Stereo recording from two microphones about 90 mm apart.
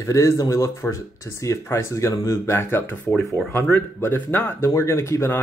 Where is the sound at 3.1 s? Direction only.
10° left (ahead or behind).